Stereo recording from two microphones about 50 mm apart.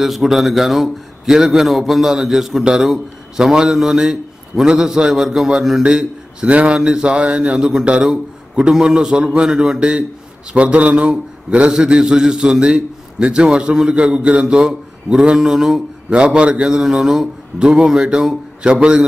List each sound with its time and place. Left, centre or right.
0.0 s a man's voice: centre; by 11.7 s right
11.7 s a man's voice: centre